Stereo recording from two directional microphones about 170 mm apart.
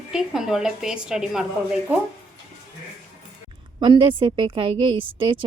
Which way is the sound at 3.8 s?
30° right (ahead or behind).